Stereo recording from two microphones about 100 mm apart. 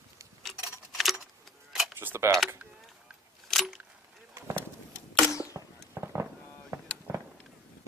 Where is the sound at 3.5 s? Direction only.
Centre (ahead or behind).